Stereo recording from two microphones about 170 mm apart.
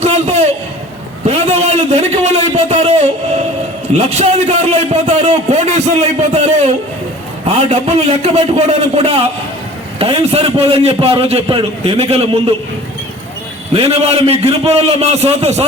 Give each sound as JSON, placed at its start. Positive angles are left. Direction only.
{"t": 0.0, "sound": "a sound", "side_deg": -40}
{"t": 3.9, "sound": "a man's voice", "side_deg": -40}
{"t": 13.7, "sound": "a man's voice", "side_deg": -35}